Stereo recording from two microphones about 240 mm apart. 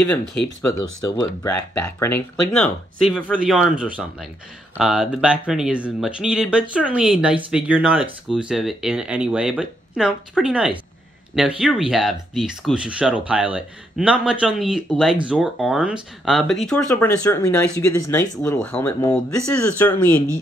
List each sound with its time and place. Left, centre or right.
1.0 s speech: centre